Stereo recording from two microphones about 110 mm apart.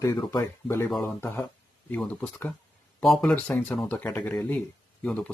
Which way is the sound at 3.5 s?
15° left (ahead or behind).